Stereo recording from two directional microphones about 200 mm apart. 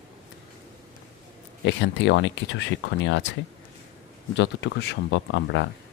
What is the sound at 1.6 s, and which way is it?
Speech, 65° left (ahead or behind).